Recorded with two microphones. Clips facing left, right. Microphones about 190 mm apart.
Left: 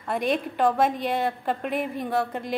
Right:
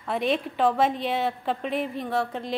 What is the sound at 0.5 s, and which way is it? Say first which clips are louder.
A woman's voice: left 1 dB; centre (ahead or behind).